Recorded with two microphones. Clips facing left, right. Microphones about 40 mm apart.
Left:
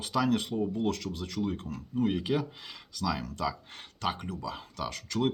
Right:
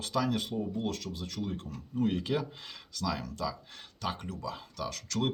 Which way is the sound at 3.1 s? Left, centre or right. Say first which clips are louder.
Left 3 dB; left.